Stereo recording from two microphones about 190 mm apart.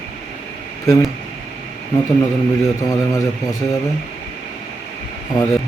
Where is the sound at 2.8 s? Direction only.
15° left (ahead or behind).